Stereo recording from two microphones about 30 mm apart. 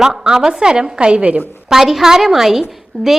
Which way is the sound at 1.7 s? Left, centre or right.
Centre.